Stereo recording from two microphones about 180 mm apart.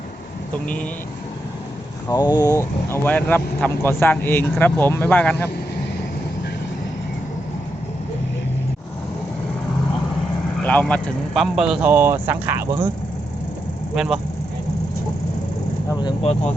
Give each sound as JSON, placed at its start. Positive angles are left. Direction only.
{"t": 2.0, "sound": "speech", "side_deg": 20}
{"t": 10.6, "sound": "speech", "side_deg": 10}
{"t": 13.9, "sound": "speech", "side_deg": -5}
{"t": 15.9, "sound": "speech", "side_deg": 25}